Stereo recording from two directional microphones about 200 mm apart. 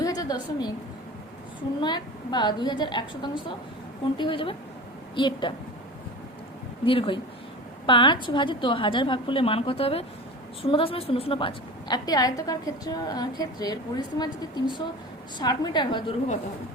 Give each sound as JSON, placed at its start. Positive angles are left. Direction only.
{"t": 0.0, "sound": "a sound", "side_deg": 20}
{"t": 1.8, "sound": "a woman's voice", "side_deg": 20}
{"t": 6.8, "sound": "a woman's voice", "side_deg": 25}